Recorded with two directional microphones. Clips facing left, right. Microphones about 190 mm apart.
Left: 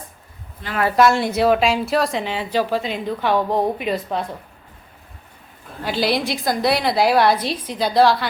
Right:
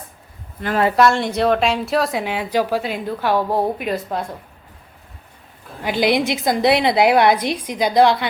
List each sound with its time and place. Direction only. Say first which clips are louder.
0.9 s speech: left 4 dB; 5° left (ahead or behind)
5.8 s a woman's voice: right 3 dB; 15° right (ahead or behind)